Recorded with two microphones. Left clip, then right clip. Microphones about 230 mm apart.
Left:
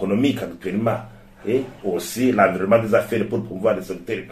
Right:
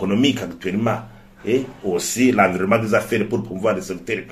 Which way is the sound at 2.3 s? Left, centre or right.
Right.